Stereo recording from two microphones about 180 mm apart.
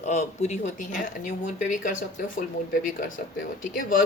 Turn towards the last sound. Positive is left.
turn(degrees=50)  # may be behind; listen again after turning